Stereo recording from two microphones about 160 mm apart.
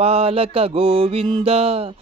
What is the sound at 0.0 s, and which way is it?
Mantra, 40° right (ahead or behind).